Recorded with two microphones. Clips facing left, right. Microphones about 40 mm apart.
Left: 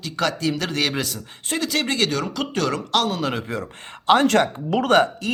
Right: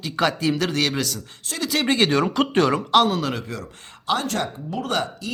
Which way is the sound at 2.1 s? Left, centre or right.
Right.